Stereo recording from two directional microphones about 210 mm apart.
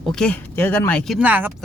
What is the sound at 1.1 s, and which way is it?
Speech, 5° right (ahead or behind).